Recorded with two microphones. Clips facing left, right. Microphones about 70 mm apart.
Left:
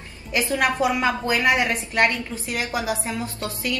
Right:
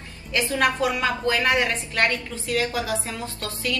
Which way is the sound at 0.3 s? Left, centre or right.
Centre.